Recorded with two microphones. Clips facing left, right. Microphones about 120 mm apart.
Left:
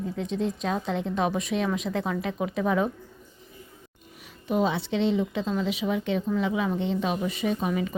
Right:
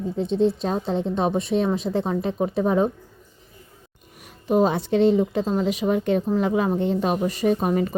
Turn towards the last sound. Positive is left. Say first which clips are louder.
# right 6 dB
turn(degrees=-45)  # may be behind; listen again after turning